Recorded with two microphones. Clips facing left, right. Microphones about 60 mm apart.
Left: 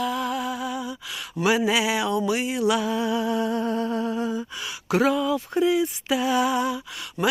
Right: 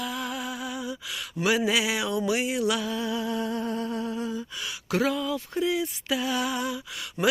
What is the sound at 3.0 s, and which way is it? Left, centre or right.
Humming, left.